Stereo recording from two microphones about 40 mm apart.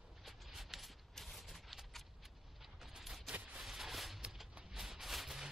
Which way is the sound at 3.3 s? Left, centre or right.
Right.